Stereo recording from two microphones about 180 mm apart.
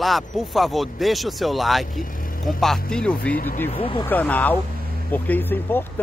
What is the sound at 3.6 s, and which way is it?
Speech, 30° left (ahead or behind).